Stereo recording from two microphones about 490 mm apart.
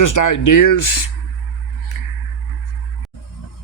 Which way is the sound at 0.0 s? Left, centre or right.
Left.